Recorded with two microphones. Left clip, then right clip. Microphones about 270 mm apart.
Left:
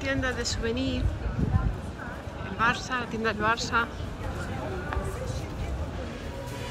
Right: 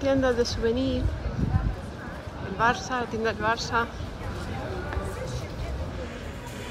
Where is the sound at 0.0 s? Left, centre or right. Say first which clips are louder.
Right 6 dB; centre.